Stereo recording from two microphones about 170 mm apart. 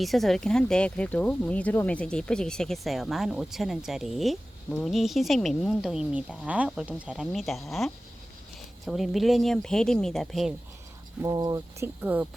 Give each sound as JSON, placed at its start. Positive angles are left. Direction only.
{"t": 0.0, "sound": "speech", "side_deg": 0}
{"t": 11.2, "sound": "speech", "side_deg": -20}
{"t": 12.0, "sound": "speech", "side_deg": -10}